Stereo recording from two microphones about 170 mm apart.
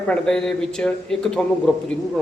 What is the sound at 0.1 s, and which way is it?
Speech, 5° left (ahead or behind).